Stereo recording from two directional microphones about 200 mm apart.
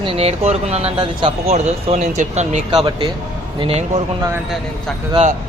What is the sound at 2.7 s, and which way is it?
Speech, 25° right (ahead or behind).